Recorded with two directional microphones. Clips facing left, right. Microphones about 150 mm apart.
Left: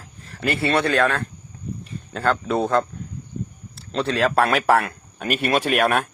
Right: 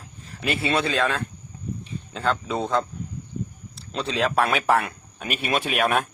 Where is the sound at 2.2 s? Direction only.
Centre (ahead or behind).